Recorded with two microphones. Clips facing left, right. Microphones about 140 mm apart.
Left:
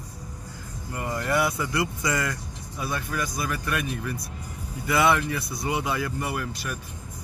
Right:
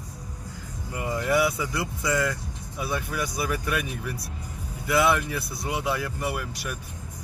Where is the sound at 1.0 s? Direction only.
5° right (ahead or behind).